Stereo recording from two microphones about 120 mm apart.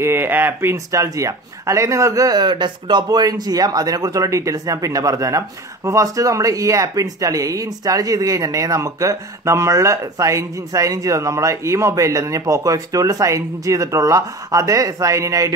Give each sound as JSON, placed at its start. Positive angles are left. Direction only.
{"t": 0.0, "sound": "speech", "side_deg": -20}